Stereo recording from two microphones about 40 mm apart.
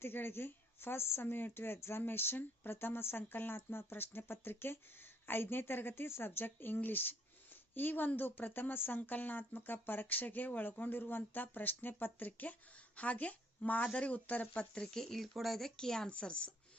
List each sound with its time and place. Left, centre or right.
0.0 s a woman's voice: left
9.0 s speech: left
13.0 s speech: left
14.8 s speech: centre
15.8 s speech: centre
16.0 s speech: left